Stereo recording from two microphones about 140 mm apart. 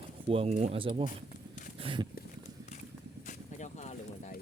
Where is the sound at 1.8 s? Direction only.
35° right (ahead or behind).